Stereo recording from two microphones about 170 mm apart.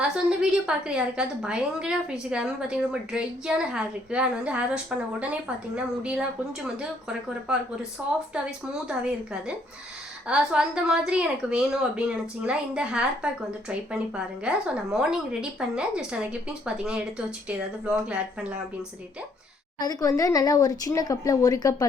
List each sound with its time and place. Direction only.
0.0 s a woman's voice: 5° right (ahead or behind)
19.8 s speech: 20° left (ahead or behind)